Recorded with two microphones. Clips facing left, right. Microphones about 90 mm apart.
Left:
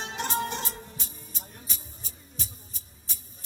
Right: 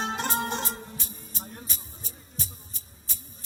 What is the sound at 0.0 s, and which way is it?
Music, 40° right (ahead or behind).